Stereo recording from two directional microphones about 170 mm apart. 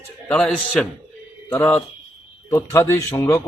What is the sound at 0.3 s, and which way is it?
A man's voice, 5° left (ahead or behind).